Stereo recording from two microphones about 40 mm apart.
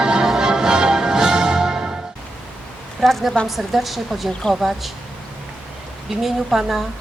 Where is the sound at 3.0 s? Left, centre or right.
Centre.